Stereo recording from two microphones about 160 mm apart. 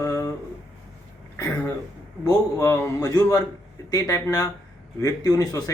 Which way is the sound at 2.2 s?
20° left (ahead or behind).